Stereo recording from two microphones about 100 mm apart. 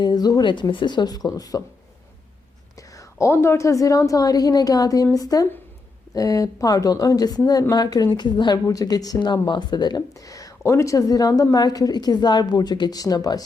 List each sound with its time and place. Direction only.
0.0 s speech: 45° left (ahead or behind)
2.7 s speech: 35° left (ahead or behind)